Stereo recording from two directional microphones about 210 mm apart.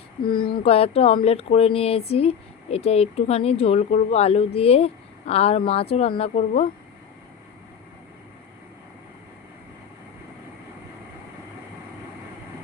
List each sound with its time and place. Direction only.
0.3 s speech: 25° left (ahead or behind)